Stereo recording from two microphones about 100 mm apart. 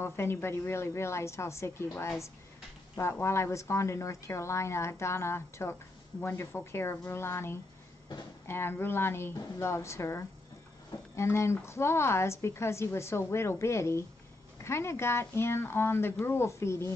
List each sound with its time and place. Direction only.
0.0 s a woman's voice: 25° left (ahead or behind)